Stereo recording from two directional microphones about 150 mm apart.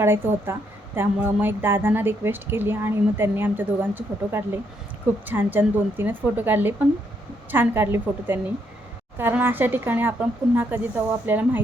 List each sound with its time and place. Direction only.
0.0 s a woman's voice: 15° right (ahead or behind)